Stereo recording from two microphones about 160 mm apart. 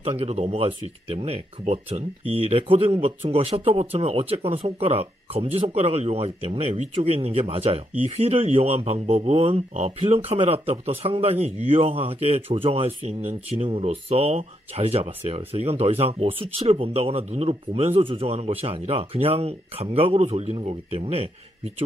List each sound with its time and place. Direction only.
0.0 s speech: 40° right (ahead or behind)